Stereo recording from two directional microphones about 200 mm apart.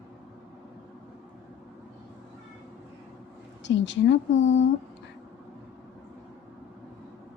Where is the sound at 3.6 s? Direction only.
65° left (ahead or behind).